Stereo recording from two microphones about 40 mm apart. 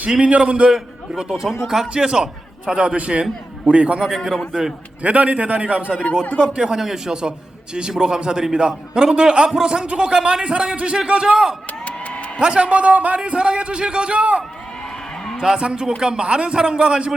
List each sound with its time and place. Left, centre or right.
0.2 s a man's voice: right
0.7 s a man's voice: centre; by 4.0 s right
5.0 s a man's voice: right